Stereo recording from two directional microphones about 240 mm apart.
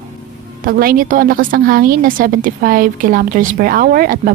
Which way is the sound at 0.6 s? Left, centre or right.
Right.